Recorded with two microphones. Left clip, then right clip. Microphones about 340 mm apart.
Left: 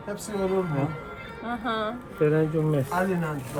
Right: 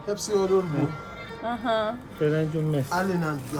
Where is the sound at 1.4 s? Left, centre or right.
Right.